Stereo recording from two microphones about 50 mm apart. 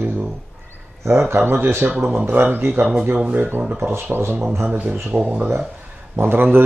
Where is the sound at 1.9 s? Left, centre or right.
Right.